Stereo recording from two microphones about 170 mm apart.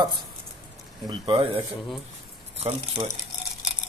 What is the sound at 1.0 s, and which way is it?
Speech, 30° right (ahead or behind).